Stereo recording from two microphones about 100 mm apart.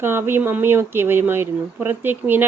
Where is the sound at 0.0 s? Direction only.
25° right (ahead or behind).